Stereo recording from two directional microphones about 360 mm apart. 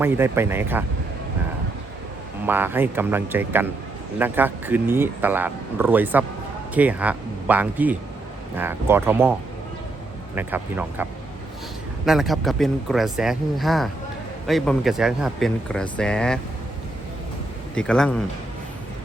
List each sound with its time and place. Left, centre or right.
0.0 s speech: centre
2.5 s speech: centre
10.3 s speech: centre
12.0 s speech: centre
17.7 s speech: centre